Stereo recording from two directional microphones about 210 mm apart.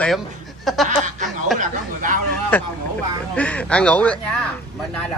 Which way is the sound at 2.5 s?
5° left (ahead or behind).